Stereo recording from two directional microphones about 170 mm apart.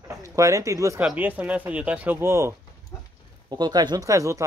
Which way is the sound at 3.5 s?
25° right (ahead or behind).